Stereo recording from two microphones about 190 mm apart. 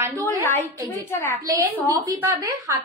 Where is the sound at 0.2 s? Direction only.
15° left (ahead or behind).